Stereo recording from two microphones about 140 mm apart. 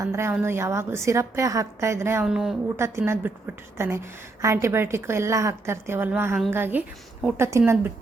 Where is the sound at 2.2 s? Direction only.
5° right (ahead or behind).